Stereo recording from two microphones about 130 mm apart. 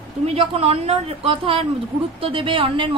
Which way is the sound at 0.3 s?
50° right (ahead or behind).